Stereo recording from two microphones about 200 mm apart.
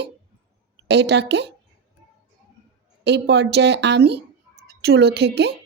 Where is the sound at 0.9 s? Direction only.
60° right (ahead or behind).